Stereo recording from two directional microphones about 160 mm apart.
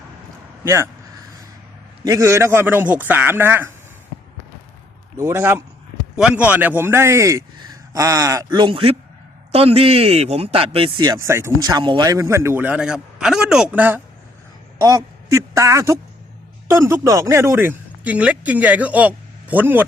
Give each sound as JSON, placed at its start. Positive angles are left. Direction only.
{"t": 0.6, "sound": "speech", "side_deg": -15}
{"t": 2.0, "sound": "a man's voice", "side_deg": -20}
{"t": 5.1, "sound": "a man's voice", "side_deg": -15}
{"t": 11.3, "sound": "a man's voice", "side_deg": -15}